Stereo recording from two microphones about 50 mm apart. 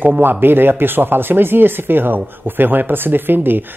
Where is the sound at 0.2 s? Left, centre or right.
Right.